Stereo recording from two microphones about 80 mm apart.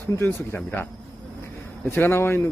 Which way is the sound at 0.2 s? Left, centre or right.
Left.